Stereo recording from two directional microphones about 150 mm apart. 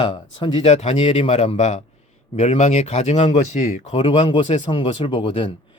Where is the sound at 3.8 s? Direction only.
40° left (ahead or behind).